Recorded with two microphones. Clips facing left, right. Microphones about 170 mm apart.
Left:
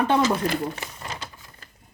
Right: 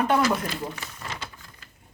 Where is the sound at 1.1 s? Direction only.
35° left (ahead or behind).